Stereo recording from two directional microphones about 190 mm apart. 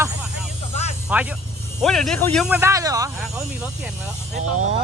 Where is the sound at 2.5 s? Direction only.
15° right (ahead or behind).